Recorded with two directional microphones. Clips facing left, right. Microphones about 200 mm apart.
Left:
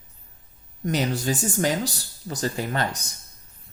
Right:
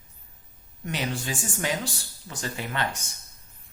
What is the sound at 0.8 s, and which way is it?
Speech, 40° left (ahead or behind).